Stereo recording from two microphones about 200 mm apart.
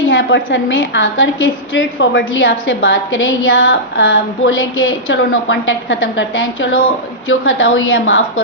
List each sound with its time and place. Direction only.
0.1 s a woman's voice: 70° left (ahead or behind)
7.3 s a woman's voice: 90° left